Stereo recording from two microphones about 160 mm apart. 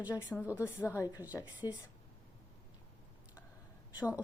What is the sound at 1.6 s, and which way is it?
Speech, 25° left (ahead or behind).